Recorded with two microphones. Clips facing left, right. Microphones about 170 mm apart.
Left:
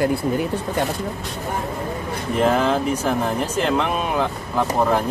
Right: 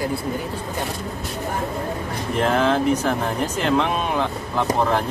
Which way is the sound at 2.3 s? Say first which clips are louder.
Left 1 dB; 5° left (ahead or behind).